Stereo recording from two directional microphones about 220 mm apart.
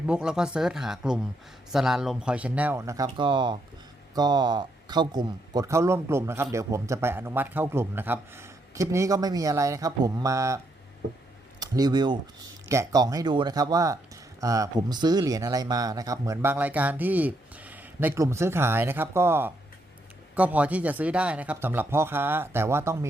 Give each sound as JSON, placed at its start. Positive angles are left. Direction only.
{"t": 0.0, "sound": "speech", "side_deg": -5}
{"t": 11.6, "sound": "speech", "side_deg": -20}